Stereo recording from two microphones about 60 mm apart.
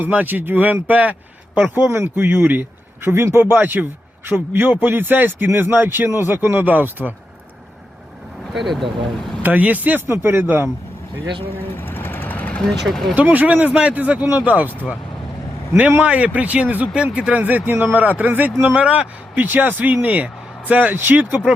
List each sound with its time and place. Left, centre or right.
0.0 s a man's voice: right
1.7 s speech: right
3.5 s a man's voice: right
8.5 s speech: centre
9.4 s speech: right
10.1 s speech: right
11.8 s vehicle: left
12.5 s speech: centre
13.1 s speech: right
16.0 s speech: right